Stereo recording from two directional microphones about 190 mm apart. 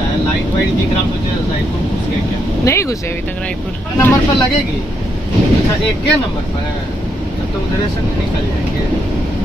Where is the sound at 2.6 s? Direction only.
15° left (ahead or behind).